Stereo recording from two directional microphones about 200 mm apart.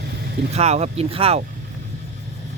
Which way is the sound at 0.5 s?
30° right (ahead or behind).